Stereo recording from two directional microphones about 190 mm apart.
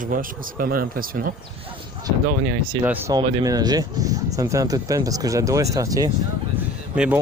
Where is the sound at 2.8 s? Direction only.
10° right (ahead or behind).